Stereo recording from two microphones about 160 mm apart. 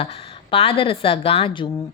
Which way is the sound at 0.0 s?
35° left (ahead or behind).